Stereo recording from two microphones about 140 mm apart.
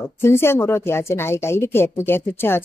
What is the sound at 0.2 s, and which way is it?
Speech, 15° left (ahead or behind).